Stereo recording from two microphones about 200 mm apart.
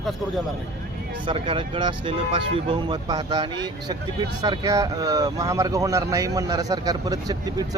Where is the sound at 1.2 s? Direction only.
25° right (ahead or behind).